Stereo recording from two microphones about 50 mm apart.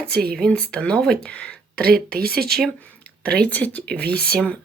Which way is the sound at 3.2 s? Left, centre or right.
Centre.